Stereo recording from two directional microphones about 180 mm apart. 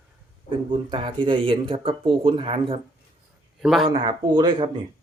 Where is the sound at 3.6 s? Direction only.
Centre (ahead or behind).